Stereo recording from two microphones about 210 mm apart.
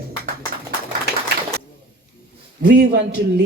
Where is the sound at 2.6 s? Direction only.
50° right (ahead or behind).